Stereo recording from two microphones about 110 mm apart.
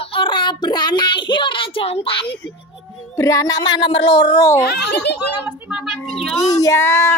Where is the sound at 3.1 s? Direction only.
30° left (ahead or behind).